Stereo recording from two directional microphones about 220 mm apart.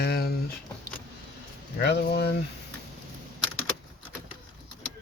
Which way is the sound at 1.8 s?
50° left (ahead or behind).